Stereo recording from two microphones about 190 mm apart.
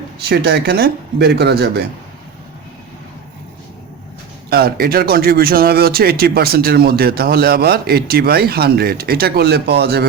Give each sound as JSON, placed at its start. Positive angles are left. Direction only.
{"t": 0.3, "sound": "speech", "side_deg": -60}
{"t": 4.4, "sound": "speech", "side_deg": -55}